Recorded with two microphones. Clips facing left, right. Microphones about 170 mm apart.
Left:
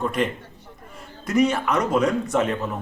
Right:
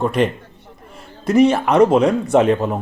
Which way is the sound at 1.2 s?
30° right (ahead or behind).